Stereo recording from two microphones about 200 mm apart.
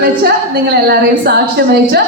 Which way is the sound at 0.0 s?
50° right (ahead or behind).